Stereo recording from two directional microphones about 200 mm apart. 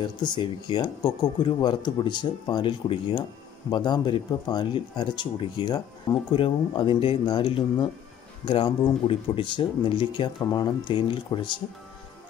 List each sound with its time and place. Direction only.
0.2 s speech: 20° left (ahead or behind)